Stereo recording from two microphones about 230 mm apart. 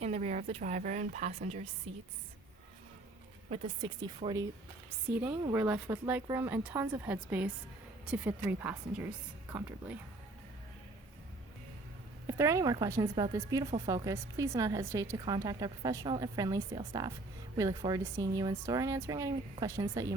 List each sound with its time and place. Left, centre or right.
0.0 s a woman's voice: right
3.5 s speech: centre
4.9 s a woman's voice: centre
12.3 s a woman's voice: centre